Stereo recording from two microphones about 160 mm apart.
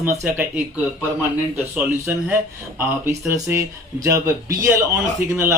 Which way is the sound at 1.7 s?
10° right (ahead or behind).